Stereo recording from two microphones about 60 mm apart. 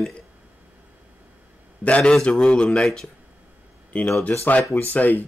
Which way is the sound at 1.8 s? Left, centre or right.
Left.